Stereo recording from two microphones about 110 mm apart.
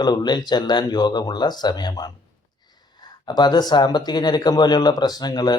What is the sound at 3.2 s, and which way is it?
Speech, 40° left (ahead or behind).